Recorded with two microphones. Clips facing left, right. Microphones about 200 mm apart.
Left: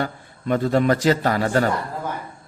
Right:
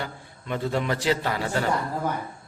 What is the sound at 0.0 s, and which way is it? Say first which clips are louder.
A man's voice: left 8 dB; 45° left (ahead or behind).